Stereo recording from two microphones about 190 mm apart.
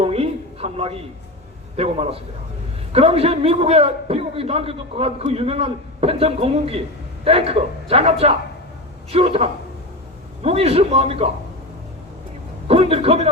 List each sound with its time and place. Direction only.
0.0 s a sound: 30° right (ahead or behind)
1.7 s a man's voice: 30° right (ahead or behind)
12.6 s a man's voice: 30° right (ahead or behind)